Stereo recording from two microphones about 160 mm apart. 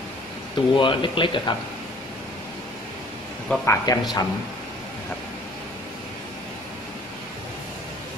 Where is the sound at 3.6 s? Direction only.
20° left (ahead or behind).